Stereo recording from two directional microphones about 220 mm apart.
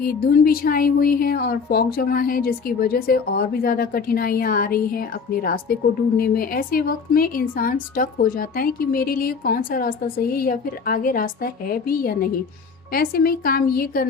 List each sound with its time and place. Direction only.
0.0 s a woman's voice: 40° left (ahead or behind)